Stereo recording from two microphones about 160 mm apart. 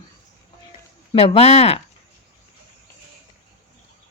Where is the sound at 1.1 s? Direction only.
40° left (ahead or behind).